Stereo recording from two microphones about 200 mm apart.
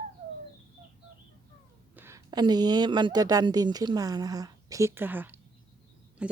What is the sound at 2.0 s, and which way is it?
A woman's voice, 15° right (ahead or behind).